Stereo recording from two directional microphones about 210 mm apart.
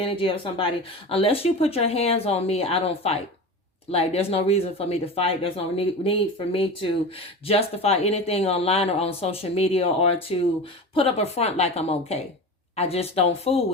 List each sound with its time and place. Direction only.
0.0 s speech: 25° left (ahead or behind)